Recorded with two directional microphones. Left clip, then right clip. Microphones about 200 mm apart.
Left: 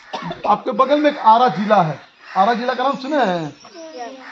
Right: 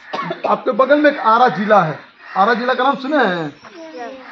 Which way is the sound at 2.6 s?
45° left (ahead or behind).